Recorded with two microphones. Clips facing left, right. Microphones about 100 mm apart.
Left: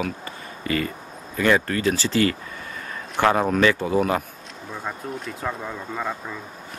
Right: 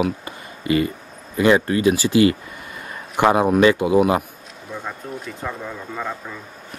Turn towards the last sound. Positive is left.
turn(degrees=5)  # may be behind; listen again after turning